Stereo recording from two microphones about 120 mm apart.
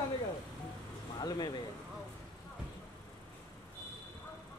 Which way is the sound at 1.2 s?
35° left (ahead or behind).